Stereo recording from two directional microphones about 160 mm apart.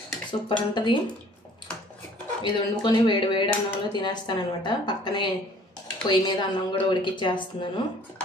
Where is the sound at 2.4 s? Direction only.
30° left (ahead or behind).